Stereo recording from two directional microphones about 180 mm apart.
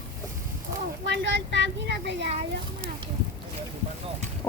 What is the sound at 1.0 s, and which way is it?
Speech, 75° right (ahead or behind).